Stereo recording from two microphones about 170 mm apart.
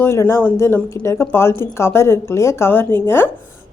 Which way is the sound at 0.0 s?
15° left (ahead or behind).